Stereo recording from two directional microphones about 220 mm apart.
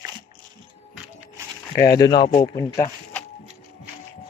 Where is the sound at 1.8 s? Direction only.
15° left (ahead or behind).